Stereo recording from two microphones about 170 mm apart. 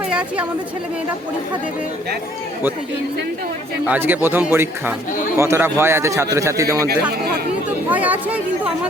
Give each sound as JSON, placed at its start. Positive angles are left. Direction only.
{"t": 0.1, "sound": "a woman's voice", "side_deg": -5}
{"t": 3.8, "sound": "a man's voice", "side_deg": -10}